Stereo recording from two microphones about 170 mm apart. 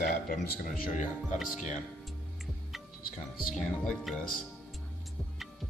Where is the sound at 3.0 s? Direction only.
55° left (ahead or behind).